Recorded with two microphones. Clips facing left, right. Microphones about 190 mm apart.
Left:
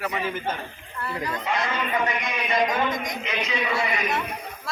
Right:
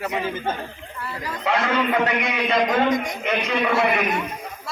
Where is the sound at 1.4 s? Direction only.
70° right (ahead or behind).